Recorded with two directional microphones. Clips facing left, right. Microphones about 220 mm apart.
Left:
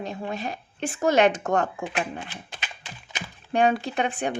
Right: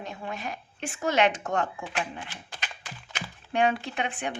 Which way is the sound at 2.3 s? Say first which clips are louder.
Left 2 dB; 20° left (ahead or behind).